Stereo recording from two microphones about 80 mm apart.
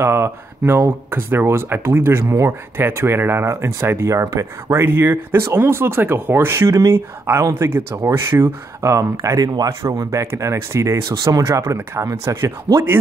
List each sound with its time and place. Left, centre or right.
0.0 s speech: right
9.8 s speech: right